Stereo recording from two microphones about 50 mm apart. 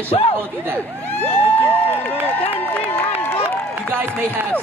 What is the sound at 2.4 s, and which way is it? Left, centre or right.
Run, left.